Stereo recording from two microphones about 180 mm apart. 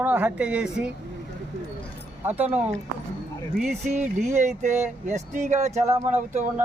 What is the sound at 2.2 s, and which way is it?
Speech, 10° right (ahead or behind).